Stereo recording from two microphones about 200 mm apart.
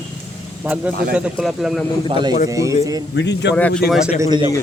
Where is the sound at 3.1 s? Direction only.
60° left (ahead or behind).